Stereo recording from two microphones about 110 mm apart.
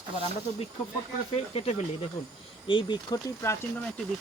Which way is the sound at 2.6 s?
50° left (ahead or behind).